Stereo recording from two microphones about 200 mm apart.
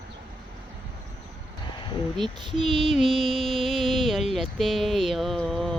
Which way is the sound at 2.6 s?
Centre (ahead or behind).